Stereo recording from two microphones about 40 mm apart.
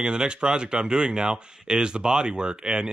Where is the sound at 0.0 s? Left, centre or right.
Right.